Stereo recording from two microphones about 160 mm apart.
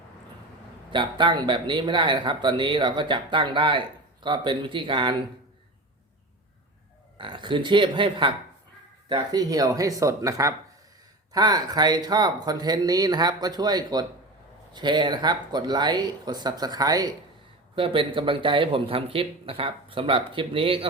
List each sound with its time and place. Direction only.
0.9 s speech: 30° right (ahead or behind)
7.2 s speech: 30° right (ahead or behind)